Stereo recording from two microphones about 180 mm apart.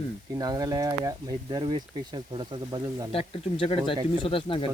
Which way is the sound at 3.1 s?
30° left (ahead or behind).